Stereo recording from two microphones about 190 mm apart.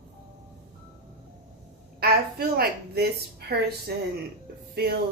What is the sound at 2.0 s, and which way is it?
A woman's voice, 55° right (ahead or behind).